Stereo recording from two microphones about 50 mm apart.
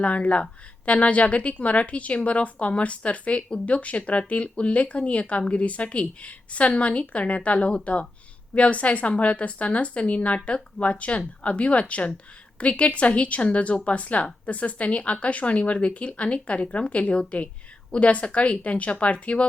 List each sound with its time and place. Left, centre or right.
0.0 s a woman's voice: left